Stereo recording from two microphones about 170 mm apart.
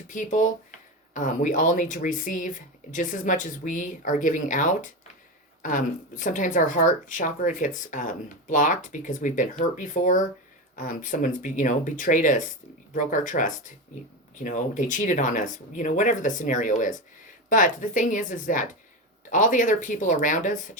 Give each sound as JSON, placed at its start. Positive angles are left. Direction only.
{"t": 0.1, "sound": "speech", "side_deg": 50}